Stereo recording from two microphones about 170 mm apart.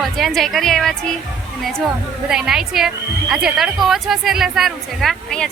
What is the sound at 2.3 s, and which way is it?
A woman's voice, 5° right (ahead or behind).